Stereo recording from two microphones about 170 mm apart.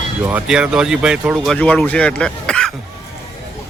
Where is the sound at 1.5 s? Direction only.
5° left (ahead or behind).